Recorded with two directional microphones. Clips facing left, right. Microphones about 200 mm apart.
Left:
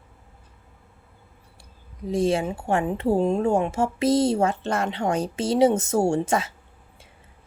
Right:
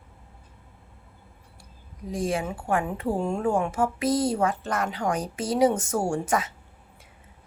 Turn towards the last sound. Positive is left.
turn(degrees=25)  # may be behind; listen again after turning